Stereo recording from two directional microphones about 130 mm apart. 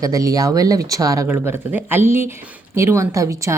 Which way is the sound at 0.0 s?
25° right (ahead or behind).